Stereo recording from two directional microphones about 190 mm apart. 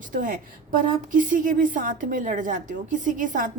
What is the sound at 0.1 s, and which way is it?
A woman's voice, 45° right (ahead or behind).